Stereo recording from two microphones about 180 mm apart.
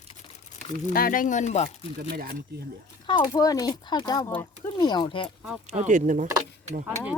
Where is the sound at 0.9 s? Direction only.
50° left (ahead or behind).